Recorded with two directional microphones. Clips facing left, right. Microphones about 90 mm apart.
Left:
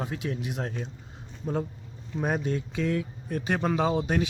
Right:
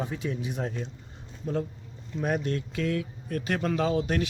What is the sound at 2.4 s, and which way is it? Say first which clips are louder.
A man's voice: left 1 dB; 15° left (ahead or behind).